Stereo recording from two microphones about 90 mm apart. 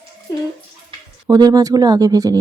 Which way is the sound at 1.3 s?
45° right (ahead or behind).